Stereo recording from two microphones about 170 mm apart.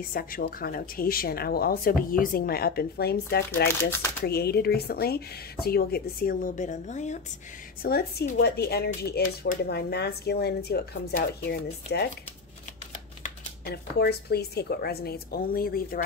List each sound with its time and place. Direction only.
0.0 s speech: 60° left (ahead or behind)
7.8 s speech: 70° left (ahead or behind)
13.7 s speech: 70° left (ahead or behind)